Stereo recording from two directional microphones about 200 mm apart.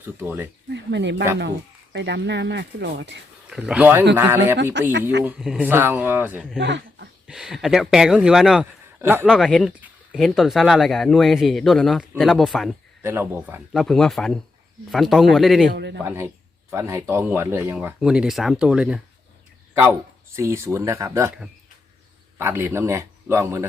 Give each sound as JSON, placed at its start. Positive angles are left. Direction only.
{"t": 0.0, "sound": "speech", "side_deg": -10}
{"t": 0.7, "sound": "speech", "side_deg": -60}
{"t": 3.5, "sound": "speech", "side_deg": -5}
{"t": 4.8, "sound": "speech", "side_deg": -65}
{"t": 5.2, "sound": "speech", "side_deg": -5}
{"t": 6.6, "sound": "speech", "side_deg": -60}
{"t": 7.3, "sound": "speech", "side_deg": 0}
{"t": 9.3, "sound": "speech", "side_deg": 0}
{"t": 13.0, "sound": "speech", "side_deg": -15}
{"t": 15.7, "sound": "speech", "side_deg": -55}
{"t": 16.0, "sound": "speech", "side_deg": -15}
{"t": 22.4, "sound": "speech", "side_deg": -10}